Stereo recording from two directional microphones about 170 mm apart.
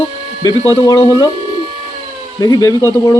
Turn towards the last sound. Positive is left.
turn(degrees=20)  # may be behind; listen again after turning